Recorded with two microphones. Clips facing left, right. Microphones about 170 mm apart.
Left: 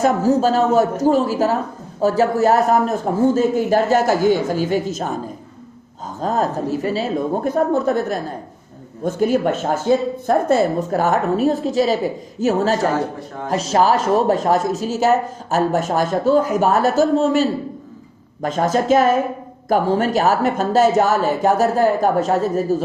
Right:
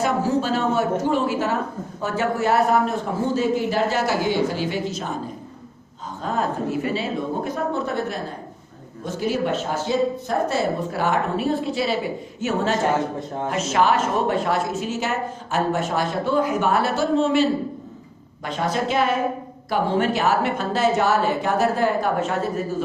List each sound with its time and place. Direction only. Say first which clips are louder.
0.0 s a woman's voice: left 6 dB; 40° left (ahead or behind)
6.2 s a woman's voice: left 4 dB; 40° left (ahead or behind)
13.1 s a man's voice: right 2 dB; 20° right (ahead or behind)
13.5 s a woman's voice: left 4 dB; 35° left (ahead or behind)